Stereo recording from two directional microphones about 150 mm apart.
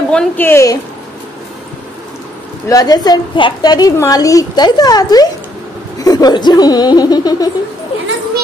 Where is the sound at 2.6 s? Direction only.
25° left (ahead or behind).